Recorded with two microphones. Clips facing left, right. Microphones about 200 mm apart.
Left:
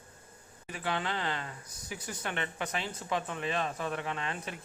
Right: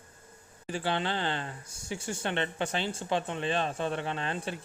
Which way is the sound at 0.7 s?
30° right (ahead or behind).